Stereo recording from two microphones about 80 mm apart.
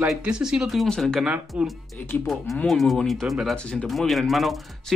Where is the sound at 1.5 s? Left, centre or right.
Centre.